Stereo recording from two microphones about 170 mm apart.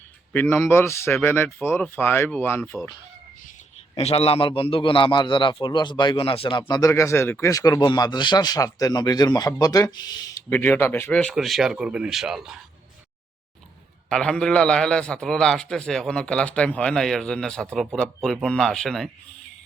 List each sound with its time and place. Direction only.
0.5 s speech: 15° left (ahead or behind)
3.9 s a man's voice: 35° left (ahead or behind); by 10.4 s 20° left (ahead or behind)
10.5 s a man's voice: 10° left (ahead or behind)
14.1 s a man's voice: 5° left (ahead or behind)